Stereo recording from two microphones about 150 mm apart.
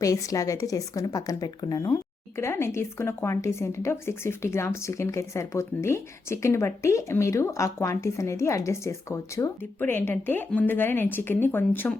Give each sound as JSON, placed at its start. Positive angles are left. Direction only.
{"t": 0.0, "sound": "a woman's voice", "side_deg": 20}